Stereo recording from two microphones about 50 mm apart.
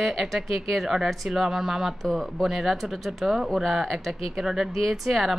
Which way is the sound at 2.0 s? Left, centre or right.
Centre.